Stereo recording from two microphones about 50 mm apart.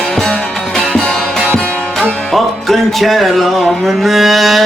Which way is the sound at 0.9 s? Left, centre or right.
Centre.